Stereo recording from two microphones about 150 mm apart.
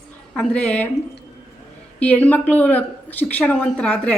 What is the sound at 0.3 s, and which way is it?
Speech, 10° left (ahead or behind).